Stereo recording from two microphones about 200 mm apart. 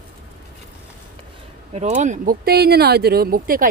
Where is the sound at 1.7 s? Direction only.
35° right (ahead or behind).